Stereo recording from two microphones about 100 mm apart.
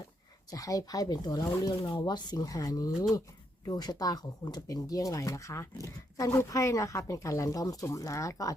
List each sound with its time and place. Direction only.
0.5 s speech: 35° left (ahead or behind)